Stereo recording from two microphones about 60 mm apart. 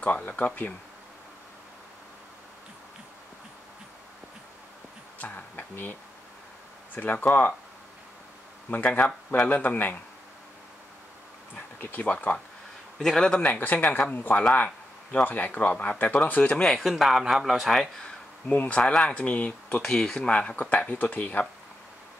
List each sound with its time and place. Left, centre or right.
0.0 s speech: left
5.2 s insect: left
7.0 s speech: left
8.6 s speech: left
11.5 s speech: left
13.0 s speech: centre
13.4 s speech: left
13.8 s speech: centre
14.1 s speech: left; by 16.8 s centre
17.0 s a man's voice: centre
18.5 s speech: left
19.8 s speech: centre
20.2 s speech: left